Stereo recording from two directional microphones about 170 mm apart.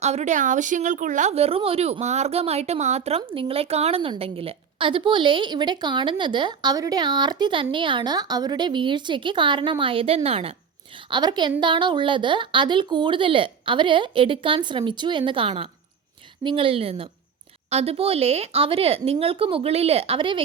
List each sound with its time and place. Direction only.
0.0 s a woman's voice: 40° right (ahead or behind)